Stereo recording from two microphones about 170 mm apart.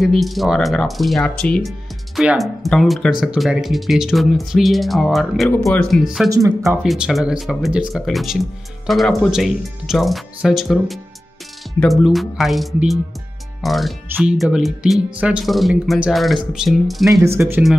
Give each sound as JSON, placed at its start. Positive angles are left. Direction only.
{"t": 0.0, "sound": "speech", "side_deg": 0}
{"t": 6.3, "sound": "speech", "side_deg": -20}
{"t": 6.8, "sound": "speech", "side_deg": 0}
{"t": 17.4, "sound": "speech", "side_deg": -10}